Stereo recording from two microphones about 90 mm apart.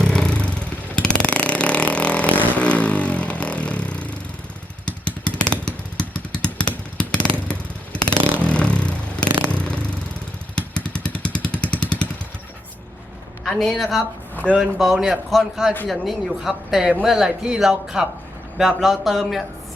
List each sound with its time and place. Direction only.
0.0 s vehicle: 10° left (ahead or behind)
7.9 s a sound: 10° left (ahead or behind)
9.5 s vehicle: 10° left (ahead or behind)
13.4 s speech: 5° left (ahead or behind)